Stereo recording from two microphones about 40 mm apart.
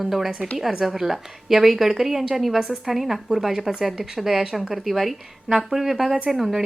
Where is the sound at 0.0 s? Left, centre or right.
Centre.